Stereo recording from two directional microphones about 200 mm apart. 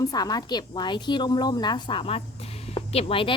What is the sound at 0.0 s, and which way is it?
A woman's voice, 20° left (ahead or behind).